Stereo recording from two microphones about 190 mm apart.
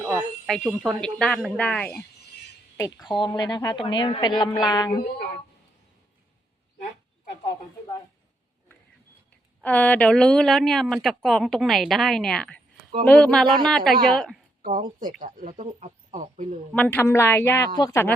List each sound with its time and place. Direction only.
0.0 s a sound: 15° right (ahead or behind)
0.4 s speech: centre (ahead or behind)
2.7 s speech: 20° left (ahead or behind)
9.6 s speech: 10° left (ahead or behind)
14.6 s speech: 45° right (ahead or behind)
16.7 s a woman's voice: 10° left (ahead or behind)